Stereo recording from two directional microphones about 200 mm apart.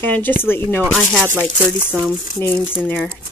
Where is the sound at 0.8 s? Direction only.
Centre (ahead or behind).